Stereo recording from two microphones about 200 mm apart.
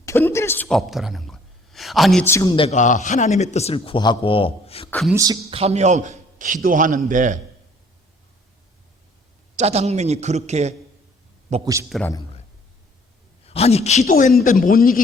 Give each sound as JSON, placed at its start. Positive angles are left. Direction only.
{"t": 0.0, "sound": "speech", "side_deg": 10}
{"t": 2.2, "sound": "a man's voice", "side_deg": 15}
{"t": 2.6, "sound": "a man's voice", "side_deg": 35}
{"t": 4.9, "sound": "speech", "side_deg": 0}
{"t": 5.1, "sound": "a man's voice", "side_deg": -20}
{"t": 9.6, "sound": "a man's voice", "side_deg": -35}
{"t": 11.6, "sound": "a man's voice", "side_deg": -15}
{"t": 13.4, "sound": "a man's voice", "side_deg": 30}